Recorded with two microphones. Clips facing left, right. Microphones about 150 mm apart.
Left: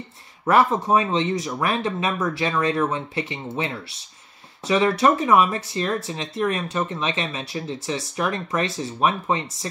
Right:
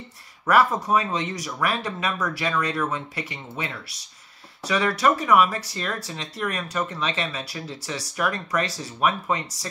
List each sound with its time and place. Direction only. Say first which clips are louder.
0.5 s speech: left 2 dB; 25° left (ahead or behind)